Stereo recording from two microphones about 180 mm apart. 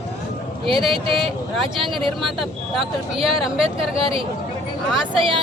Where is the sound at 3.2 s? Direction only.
Centre (ahead or behind).